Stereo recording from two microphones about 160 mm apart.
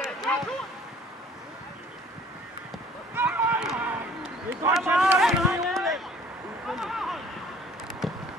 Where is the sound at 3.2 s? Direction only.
10° right (ahead or behind).